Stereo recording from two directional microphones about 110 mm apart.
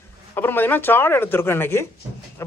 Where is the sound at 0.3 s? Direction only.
20° left (ahead or behind).